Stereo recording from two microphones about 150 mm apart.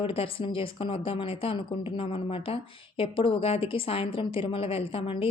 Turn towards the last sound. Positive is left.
turn(degrees=35)  # may be behind; listen again after turning